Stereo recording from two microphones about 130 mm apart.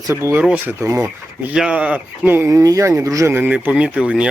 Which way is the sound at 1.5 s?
10° right (ahead or behind).